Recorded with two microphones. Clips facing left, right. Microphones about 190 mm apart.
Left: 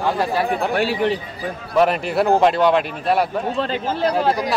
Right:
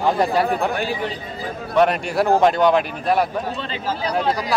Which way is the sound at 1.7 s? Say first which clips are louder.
Even; centre (ahead or behind).